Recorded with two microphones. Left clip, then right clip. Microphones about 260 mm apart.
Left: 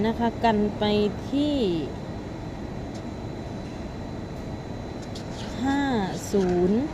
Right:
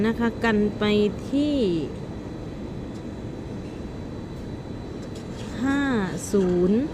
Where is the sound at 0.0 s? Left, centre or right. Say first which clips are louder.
Left 1 dB; centre.